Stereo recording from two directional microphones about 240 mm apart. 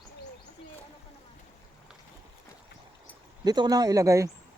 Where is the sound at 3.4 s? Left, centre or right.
Centre.